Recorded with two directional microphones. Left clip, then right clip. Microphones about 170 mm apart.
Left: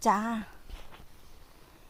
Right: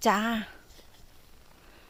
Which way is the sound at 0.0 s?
10° right (ahead or behind).